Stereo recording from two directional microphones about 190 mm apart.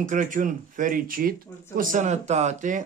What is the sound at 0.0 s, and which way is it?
Speech, 45° right (ahead or behind).